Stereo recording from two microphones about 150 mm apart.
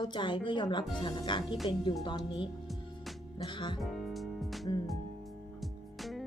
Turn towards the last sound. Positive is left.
turn(degrees=0)  # may be behind; listen again after turning